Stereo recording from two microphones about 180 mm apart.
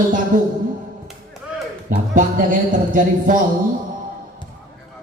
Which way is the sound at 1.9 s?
50° right (ahead or behind).